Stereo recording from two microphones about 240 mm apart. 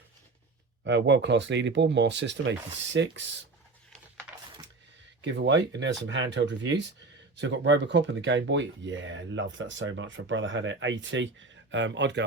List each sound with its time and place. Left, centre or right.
0.9 s speech: right
5.2 s speech: right